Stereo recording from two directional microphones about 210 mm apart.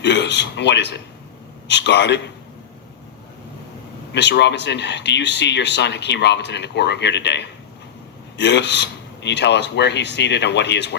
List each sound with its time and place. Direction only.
0.0 s speech: 55° left (ahead or behind)
4.1 s speech: 55° left (ahead or behind)